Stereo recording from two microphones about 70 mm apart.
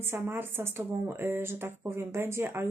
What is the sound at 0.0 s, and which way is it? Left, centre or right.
Speech, right.